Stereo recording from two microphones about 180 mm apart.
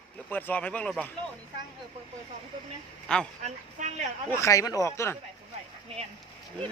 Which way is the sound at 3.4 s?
40° right (ahead or behind).